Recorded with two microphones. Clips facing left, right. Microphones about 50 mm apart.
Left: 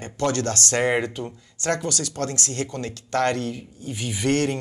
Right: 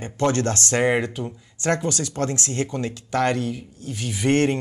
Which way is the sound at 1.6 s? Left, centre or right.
Right.